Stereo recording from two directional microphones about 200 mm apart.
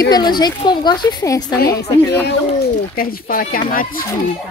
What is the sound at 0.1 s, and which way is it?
Speech, 20° left (ahead or behind).